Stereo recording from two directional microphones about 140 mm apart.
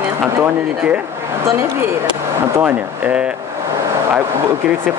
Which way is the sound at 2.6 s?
10° right (ahead or behind).